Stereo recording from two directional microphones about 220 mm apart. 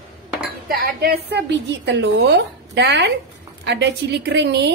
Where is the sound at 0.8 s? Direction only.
45° right (ahead or behind).